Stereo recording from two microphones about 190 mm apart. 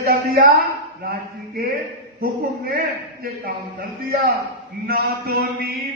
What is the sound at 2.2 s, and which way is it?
A man's voice, 50° right (ahead or behind).